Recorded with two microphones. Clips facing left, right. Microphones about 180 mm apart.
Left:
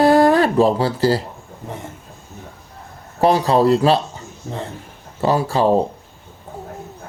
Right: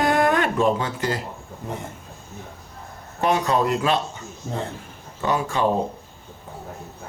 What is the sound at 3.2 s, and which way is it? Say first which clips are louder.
Speech: left 6 dB; 35° left (ahead or behind).